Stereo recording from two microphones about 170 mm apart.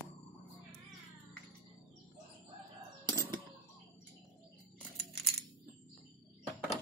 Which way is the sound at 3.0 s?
25° right (ahead or behind).